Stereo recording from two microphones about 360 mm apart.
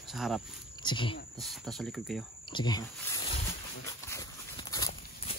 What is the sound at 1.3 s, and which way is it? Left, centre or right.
Speech, centre.